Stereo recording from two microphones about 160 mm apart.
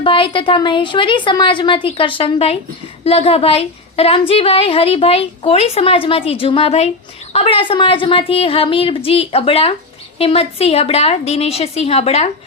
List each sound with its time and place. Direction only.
0.0 s a woman's voice: 30° left (ahead or behind)